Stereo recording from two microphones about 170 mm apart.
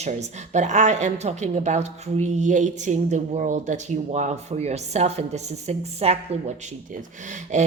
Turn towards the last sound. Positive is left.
turn(degrees=-45)  # may be behind; listen again after turning